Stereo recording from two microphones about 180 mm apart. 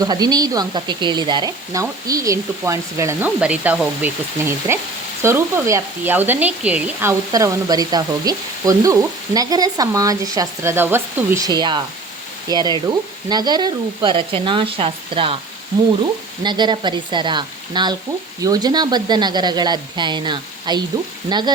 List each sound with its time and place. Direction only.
0.0 s speech: 20° right (ahead or behind)
16.4 s speech: 25° right (ahead or behind)